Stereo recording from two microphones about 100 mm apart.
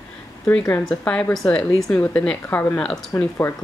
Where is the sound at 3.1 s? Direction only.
30° left (ahead or behind).